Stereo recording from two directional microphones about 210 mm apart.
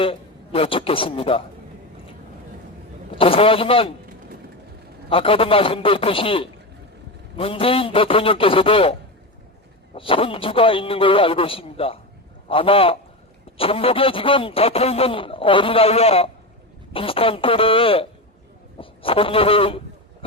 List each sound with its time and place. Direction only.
0.0 s a man's voice: 25° left (ahead or behind)
3.2 s speech: 25° left (ahead or behind)
5.0 s speech: 25° left (ahead or behind)